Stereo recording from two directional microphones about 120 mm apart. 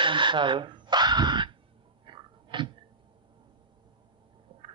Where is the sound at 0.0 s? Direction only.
40° right (ahead or behind).